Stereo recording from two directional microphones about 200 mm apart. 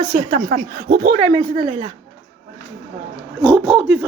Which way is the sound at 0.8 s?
50° right (ahead or behind).